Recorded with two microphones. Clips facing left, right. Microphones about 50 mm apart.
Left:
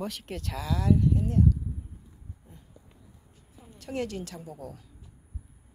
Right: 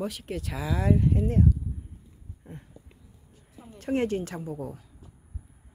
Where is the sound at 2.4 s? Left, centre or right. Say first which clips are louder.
Right 15 dB; right.